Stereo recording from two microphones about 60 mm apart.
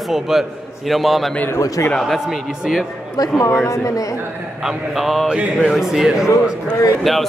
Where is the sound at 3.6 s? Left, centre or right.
Left.